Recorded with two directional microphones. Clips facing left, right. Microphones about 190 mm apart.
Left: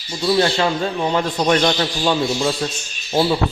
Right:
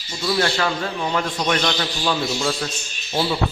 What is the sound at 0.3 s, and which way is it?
A man's voice, 25° left (ahead or behind).